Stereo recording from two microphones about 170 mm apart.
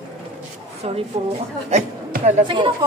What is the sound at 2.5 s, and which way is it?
Speech, 30° right (ahead or behind).